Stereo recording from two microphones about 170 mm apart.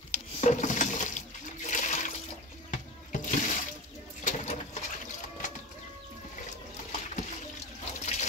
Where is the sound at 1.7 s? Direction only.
45° left (ahead or behind).